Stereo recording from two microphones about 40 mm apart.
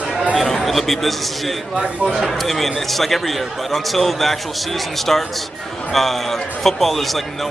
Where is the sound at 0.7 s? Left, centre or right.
Centre.